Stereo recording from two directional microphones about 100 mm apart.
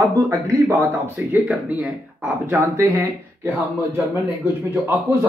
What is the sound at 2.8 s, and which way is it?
Speech, 30° right (ahead or behind).